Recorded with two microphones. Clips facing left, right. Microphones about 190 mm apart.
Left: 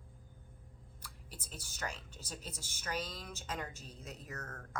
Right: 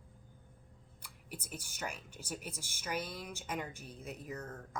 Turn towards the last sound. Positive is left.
turn(degrees=-15)  # may be behind; listen again after turning